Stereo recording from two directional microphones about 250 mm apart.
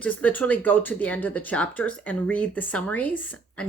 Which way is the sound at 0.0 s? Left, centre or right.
Centre.